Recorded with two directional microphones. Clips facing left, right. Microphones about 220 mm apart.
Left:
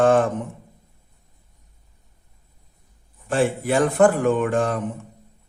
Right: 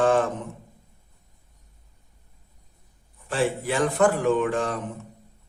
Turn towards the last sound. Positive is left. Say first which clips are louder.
# left 3 dB
turn(degrees=50)  # may be behind; listen again after turning